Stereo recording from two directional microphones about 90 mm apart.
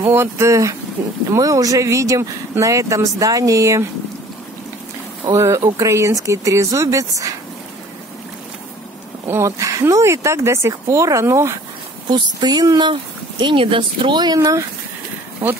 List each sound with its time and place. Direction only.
0.1 s speech: 30° right (ahead or behind)
1.0 s speech: 25° right (ahead or behind)
1.3 s speech: 40° right (ahead or behind)
5.3 s speech: 35° right (ahead or behind)
9.3 s speech: 35° right (ahead or behind)
12.1 s speech: 50° right (ahead or behind)
13.4 s speech: 65° right (ahead or behind); by 14.6 s 40° right (ahead or behind)